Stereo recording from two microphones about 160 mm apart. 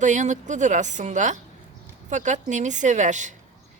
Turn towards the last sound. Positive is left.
turn(degrees=-50)  # may be behind; listen again after turning